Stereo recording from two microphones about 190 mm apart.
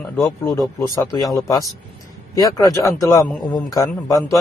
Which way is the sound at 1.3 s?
15° left (ahead or behind).